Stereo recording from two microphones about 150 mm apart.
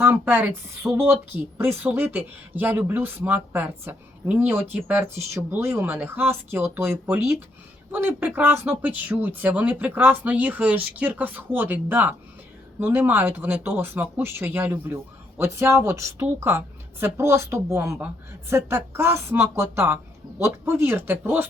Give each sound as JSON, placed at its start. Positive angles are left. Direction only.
{"t": 0.0, "sound": "a woman's voice", "side_deg": -15}